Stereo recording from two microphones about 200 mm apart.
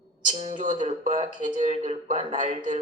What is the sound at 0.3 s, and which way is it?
Speech, 35° right (ahead or behind).